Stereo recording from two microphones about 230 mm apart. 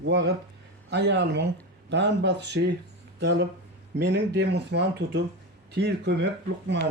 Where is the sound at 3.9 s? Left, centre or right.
Right.